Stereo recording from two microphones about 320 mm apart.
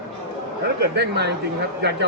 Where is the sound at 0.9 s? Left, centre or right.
Right.